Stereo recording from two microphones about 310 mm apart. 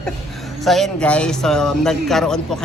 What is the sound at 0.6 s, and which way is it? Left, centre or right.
Speech, centre.